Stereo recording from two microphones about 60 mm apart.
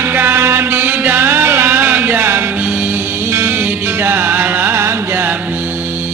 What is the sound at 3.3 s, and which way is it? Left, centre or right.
Music, right.